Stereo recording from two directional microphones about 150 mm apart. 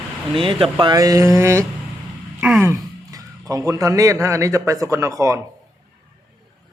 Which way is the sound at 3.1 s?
25° right (ahead or behind).